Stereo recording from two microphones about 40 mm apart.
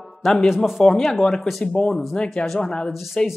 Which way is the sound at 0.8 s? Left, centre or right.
Left.